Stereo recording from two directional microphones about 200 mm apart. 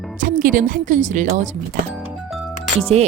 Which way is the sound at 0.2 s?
40° right (ahead or behind).